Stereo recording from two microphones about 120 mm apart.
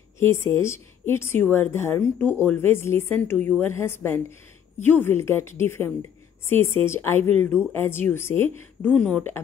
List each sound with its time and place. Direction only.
0.2 s a woman's voice: 20° left (ahead or behind)
8.9 s speech: 5° left (ahead or behind)